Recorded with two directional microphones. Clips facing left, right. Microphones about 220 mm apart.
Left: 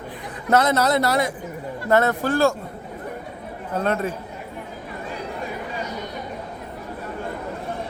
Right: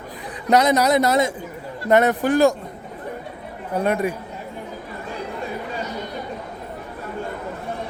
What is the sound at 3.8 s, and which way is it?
Speech, 10° right (ahead or behind).